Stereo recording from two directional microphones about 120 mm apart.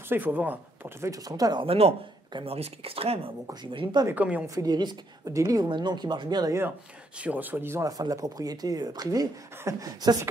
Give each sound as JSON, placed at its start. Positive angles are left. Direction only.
{"t": 0.1, "sound": "speech", "side_deg": -15}
{"t": 1.7, "sound": "speech", "side_deg": -60}
{"t": 3.7, "sound": "speech", "side_deg": -40}
{"t": 4.1, "sound": "speech", "side_deg": -10}
{"t": 4.6, "sound": "speech", "side_deg": -35}
{"t": 5.7, "sound": "speech", "side_deg": -40}
{"t": 7.2, "sound": "speech", "side_deg": -15}
{"t": 8.0, "sound": "speech", "side_deg": -30}